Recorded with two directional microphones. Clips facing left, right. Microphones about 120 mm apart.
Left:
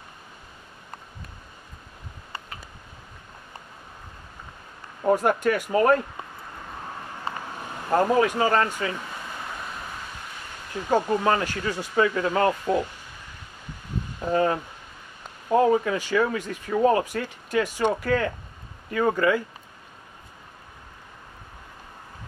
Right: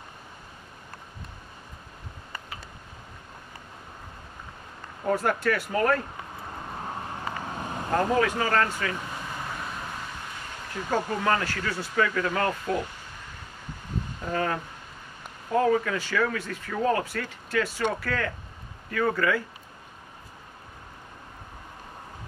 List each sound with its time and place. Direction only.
5.0 s speech: 20° left (ahead or behind)
7.9 s speech: 20° left (ahead or behind)
10.9 s speech: 20° left (ahead or behind)
14.3 s speech: 25° left (ahead or behind)